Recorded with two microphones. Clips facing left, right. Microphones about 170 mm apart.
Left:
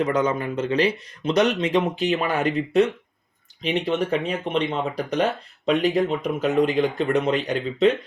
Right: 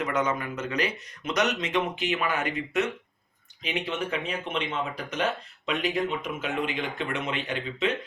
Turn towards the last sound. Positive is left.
turn(degrees=40)  # may be behind; listen again after turning